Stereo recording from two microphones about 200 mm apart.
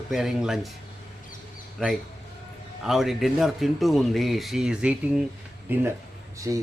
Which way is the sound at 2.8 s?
Centre (ahead or behind).